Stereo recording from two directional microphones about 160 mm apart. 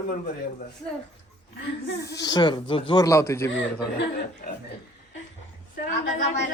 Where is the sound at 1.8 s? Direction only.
90° left.